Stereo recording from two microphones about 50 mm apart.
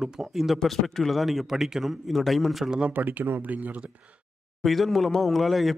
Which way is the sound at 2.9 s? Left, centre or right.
Right.